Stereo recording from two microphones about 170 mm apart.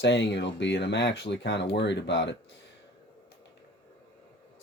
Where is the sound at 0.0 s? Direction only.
90° left.